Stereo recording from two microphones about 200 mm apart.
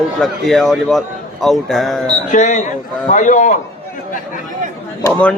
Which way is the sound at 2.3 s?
40° left (ahead or behind).